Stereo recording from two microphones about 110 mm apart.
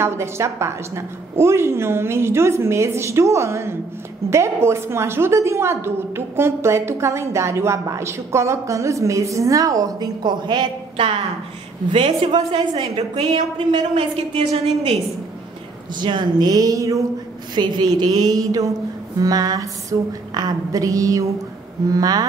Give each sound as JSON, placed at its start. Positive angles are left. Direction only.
{"t": 0.0, "sound": "a woman's voice", "side_deg": -25}
{"t": 11.9, "sound": "a woman's voice", "side_deg": -50}
{"t": 12.7, "sound": "a woman's voice", "side_deg": -65}
{"t": 15.9, "sound": "a woman's voice", "side_deg": -45}
{"t": 17.6, "sound": "a woman's voice", "side_deg": -40}